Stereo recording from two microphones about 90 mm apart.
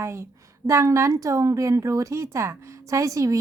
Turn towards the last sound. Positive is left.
turn(degrees=-40)  # may be behind; listen again after turning